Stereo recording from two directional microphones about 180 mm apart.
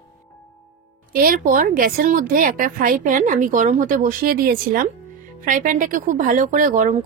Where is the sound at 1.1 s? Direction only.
50° right (ahead or behind).